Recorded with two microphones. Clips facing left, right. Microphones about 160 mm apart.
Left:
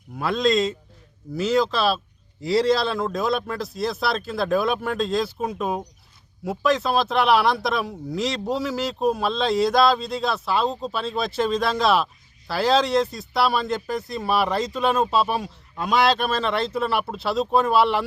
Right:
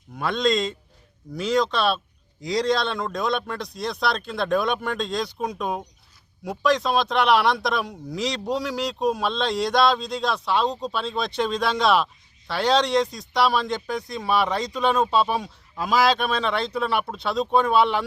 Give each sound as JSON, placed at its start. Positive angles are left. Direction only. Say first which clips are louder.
{"t": 0.2, "sound": "speech", "louder": "left 2 dB", "side_deg": 0}